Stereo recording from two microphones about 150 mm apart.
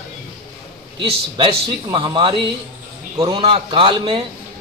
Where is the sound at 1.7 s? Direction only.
30° right (ahead or behind).